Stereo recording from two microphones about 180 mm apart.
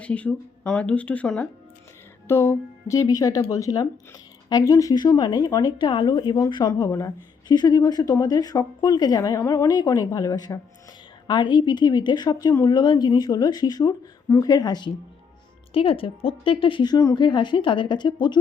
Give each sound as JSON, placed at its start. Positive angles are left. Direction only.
{"t": 0.0, "sound": "speech", "side_deg": 5}